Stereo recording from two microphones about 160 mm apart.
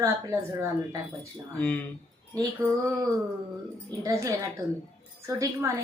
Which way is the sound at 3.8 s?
20° right (ahead or behind).